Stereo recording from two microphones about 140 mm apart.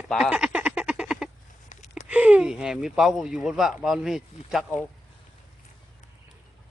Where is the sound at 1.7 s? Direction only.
55° left (ahead or behind).